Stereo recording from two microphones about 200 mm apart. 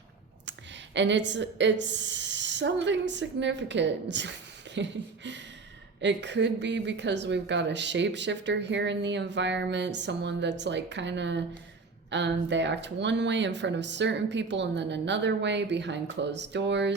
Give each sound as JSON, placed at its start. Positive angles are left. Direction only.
{"t": 0.9, "sound": "speech", "side_deg": -60}